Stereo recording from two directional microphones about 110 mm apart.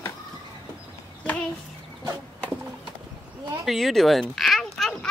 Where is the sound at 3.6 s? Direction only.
Centre (ahead or behind).